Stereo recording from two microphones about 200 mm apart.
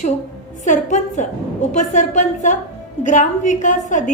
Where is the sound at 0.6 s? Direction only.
40° left (ahead or behind).